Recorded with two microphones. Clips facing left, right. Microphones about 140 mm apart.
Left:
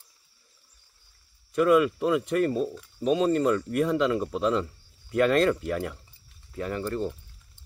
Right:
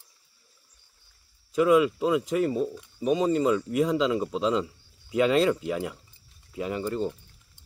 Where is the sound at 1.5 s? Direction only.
5° right (ahead or behind).